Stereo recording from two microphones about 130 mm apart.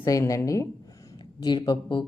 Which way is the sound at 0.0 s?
25° left (ahead or behind).